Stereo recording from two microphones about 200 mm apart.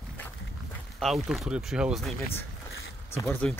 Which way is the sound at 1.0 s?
Centre (ahead or behind).